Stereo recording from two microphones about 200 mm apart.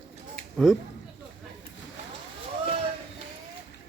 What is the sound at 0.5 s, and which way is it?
Speech, centre (ahead or behind).